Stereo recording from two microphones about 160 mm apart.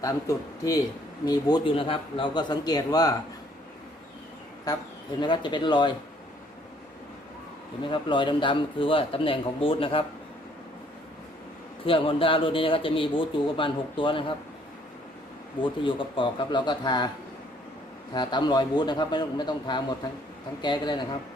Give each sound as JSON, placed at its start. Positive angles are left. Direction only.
{"t": 0.0, "sound": "a man's voice", "side_deg": 20}
{"t": 4.7, "sound": "a man's voice", "side_deg": 25}
{"t": 7.8, "sound": "speech", "side_deg": 30}
{"t": 11.9, "sound": "speech", "side_deg": 35}
{"t": 15.6, "sound": "a man's voice", "side_deg": 30}
{"t": 18.1, "sound": "a man's voice", "side_deg": 25}